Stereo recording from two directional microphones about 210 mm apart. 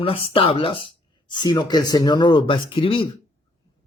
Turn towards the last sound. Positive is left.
turn(degrees=25)  # may be behind; listen again after turning